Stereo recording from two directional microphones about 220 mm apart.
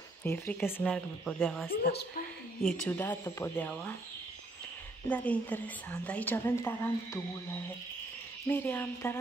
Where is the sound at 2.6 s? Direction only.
10° left (ahead or behind).